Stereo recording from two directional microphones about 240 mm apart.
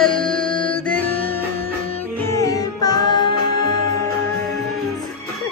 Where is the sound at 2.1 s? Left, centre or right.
Centre.